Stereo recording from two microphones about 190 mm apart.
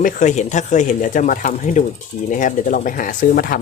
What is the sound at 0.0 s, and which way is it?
Speech, 40° left (ahead or behind).